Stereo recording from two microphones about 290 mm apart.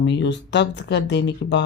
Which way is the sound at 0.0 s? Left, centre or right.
Left.